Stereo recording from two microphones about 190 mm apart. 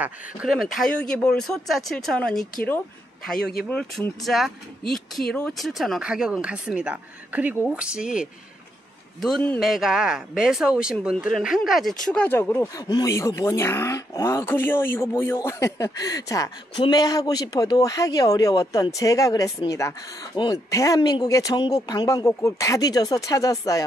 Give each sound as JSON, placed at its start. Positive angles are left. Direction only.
{"t": 0.0, "sound": "speech", "side_deg": -5}
{"t": 3.6, "sound": "speech", "side_deg": 5}